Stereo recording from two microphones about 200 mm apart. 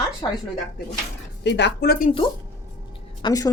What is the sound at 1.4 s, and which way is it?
Speech, 60° left (ahead or behind).